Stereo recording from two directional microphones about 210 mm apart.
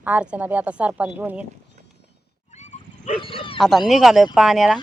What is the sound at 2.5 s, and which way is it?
Dog, 35° left (ahead or behind).